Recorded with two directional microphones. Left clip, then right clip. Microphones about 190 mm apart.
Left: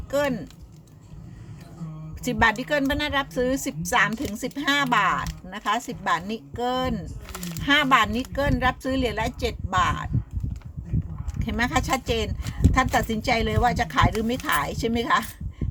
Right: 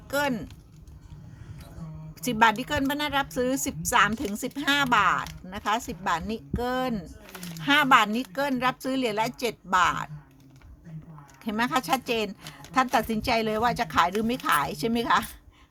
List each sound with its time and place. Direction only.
0.1 s speech: 30° right (ahead or behind)
2.2 s speech: 25° right (ahead or behind)
11.3 s speech: 20° right (ahead or behind)